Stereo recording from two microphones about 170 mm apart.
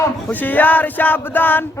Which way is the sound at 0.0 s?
10° left (ahead or behind).